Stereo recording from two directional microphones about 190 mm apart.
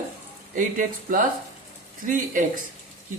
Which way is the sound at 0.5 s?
45° right (ahead or behind).